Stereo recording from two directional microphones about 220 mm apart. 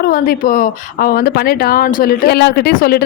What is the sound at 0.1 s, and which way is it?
Speech, 40° left (ahead or behind).